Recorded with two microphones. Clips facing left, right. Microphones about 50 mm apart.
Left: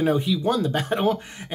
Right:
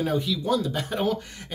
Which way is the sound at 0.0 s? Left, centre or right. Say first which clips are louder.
Left 4 dB; left.